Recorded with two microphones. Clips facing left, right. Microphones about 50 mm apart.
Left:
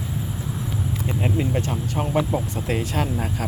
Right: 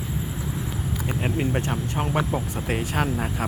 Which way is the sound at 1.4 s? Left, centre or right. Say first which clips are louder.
Left 1 dB; right.